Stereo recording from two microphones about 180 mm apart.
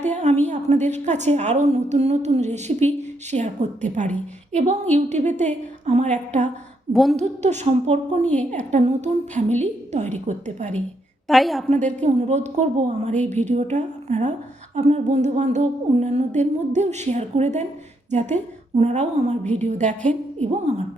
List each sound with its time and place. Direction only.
0.0 s a woman's voice: 40° right (ahead or behind)
6.9 s a woman's voice: centre (ahead or behind)
7.2 s a woman's voice: 40° right (ahead or behind)
11.3 s a woman's voice: centre (ahead or behind)
11.7 s a woman's voice: 40° right (ahead or behind)